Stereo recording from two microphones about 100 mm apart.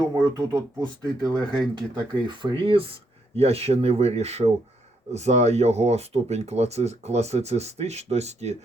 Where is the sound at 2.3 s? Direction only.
50° right (ahead or behind).